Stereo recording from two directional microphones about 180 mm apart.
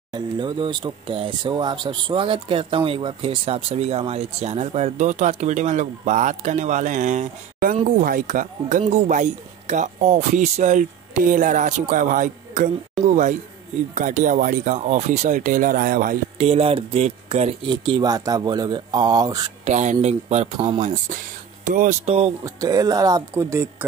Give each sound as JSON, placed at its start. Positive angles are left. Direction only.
{"t": 0.1, "sound": "speech", "side_deg": -25}
{"t": 8.0, "sound": "speech", "side_deg": -50}
{"t": 16.3, "sound": "speech", "side_deg": -30}
{"t": 19.6, "sound": "speech", "side_deg": -40}
{"t": 22.4, "sound": "speech", "side_deg": -20}